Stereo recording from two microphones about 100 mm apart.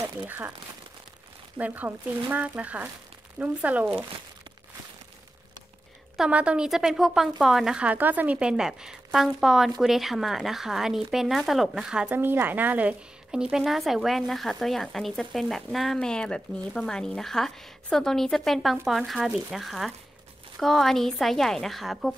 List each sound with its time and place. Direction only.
0.2 s speech: 15° right (ahead or behind)
1.6 s speech: 20° right (ahead or behind)
6.1 s speech: 10° right (ahead or behind)
12.2 s speech: 20° right (ahead or behind); by 22.1 s centre (ahead or behind)